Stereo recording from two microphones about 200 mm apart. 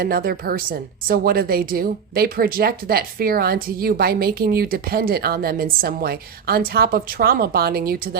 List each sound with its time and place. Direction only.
0.0 s a woman's voice: 50° right (ahead or behind)